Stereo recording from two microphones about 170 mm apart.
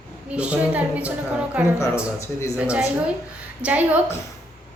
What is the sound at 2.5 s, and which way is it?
Speech, 5° right (ahead or behind).